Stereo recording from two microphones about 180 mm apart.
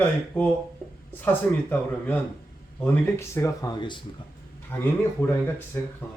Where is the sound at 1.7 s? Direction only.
10° left (ahead or behind); by 4.0 s 25° left (ahead or behind).